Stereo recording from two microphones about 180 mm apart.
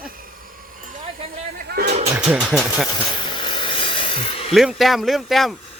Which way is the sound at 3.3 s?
25° left (ahead or behind).